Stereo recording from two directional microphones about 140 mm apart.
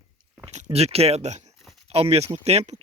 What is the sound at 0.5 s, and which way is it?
Speech, 50° right (ahead or behind).